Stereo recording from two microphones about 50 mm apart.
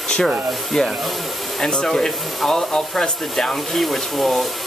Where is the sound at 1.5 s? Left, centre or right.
Centre.